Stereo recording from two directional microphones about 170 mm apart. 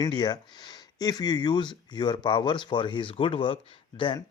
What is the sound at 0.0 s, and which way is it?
Speech, 25° left (ahead or behind).